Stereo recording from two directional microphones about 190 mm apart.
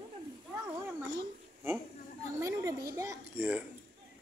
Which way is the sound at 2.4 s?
15° right (ahead or behind).